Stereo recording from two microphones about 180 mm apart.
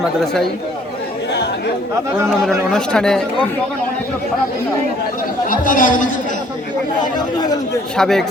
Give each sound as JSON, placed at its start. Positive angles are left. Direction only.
{"t": 1.3, "sound": "chatter", "side_deg": 70}
{"t": 2.4, "sound": "speech", "side_deg": 0}
{"t": 5.5, "sound": "speech", "side_deg": 50}
{"t": 7.0, "sound": "speech", "side_deg": 20}
{"t": 7.9, "sound": "speech", "side_deg": 0}